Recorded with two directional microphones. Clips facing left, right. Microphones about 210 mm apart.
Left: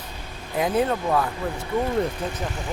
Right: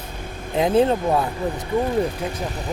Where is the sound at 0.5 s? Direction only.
25° right (ahead or behind).